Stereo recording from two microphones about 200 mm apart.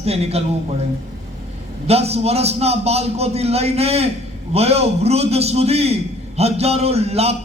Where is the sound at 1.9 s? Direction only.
30° right (ahead or behind).